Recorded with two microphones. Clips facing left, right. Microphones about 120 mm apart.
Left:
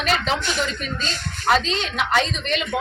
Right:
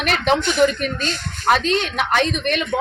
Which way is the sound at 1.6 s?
60° right (ahead or behind).